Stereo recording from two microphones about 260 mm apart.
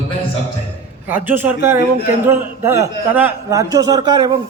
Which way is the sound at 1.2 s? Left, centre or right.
Centre.